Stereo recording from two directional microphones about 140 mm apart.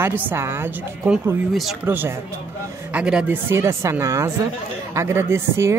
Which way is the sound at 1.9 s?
15° right (ahead or behind).